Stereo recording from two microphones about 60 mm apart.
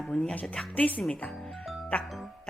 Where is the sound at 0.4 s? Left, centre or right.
Centre.